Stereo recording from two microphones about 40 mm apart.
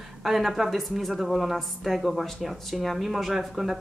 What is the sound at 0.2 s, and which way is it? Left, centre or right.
Speech, centre.